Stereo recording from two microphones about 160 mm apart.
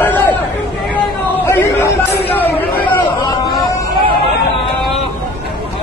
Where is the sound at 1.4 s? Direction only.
15° left (ahead or behind).